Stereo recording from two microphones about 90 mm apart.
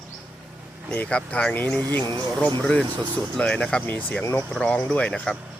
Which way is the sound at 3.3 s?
10° left (ahead or behind).